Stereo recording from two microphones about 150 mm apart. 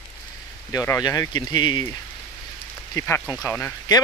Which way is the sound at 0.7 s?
20° left (ahead or behind).